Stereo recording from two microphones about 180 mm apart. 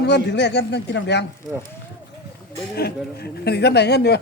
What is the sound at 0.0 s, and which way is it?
Speech, 70° left (ahead or behind).